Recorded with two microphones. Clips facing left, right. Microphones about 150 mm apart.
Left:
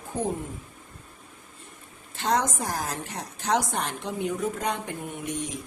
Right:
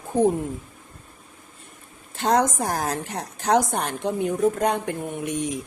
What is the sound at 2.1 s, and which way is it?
A woman's voice, 55° right (ahead or behind).